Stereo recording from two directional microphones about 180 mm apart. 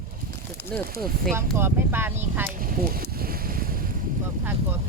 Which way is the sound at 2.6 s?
55° right (ahead or behind).